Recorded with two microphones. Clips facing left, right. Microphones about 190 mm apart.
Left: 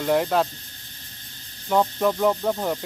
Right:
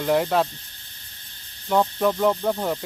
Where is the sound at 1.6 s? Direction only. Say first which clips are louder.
Even; centre (ahead or behind).